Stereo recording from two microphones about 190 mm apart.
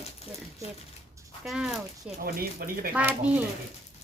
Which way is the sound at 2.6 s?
50° right (ahead or behind).